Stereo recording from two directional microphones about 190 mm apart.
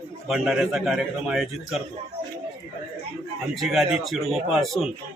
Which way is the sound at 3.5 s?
Centre (ahead or behind).